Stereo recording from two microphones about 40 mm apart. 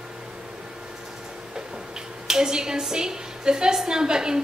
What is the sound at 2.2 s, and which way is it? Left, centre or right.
A woman's voice, centre.